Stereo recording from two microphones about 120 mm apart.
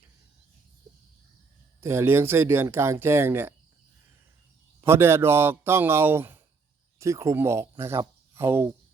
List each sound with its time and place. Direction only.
1.8 s speech: 20° right (ahead or behind)
4.8 s speech: 20° right (ahead or behind)